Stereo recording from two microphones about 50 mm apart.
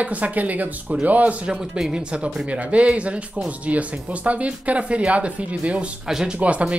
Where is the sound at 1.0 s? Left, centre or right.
Right.